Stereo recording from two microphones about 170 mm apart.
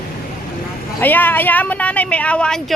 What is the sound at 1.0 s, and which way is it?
A woman's voice, 10° left (ahead or behind).